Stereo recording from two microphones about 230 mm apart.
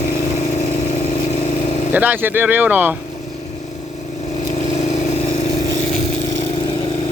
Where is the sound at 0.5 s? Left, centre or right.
Left.